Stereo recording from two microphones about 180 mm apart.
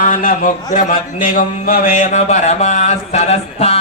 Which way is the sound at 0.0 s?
50° left (ahead or behind).